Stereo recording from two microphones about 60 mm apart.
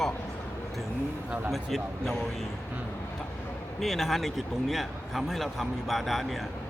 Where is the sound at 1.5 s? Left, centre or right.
Centre.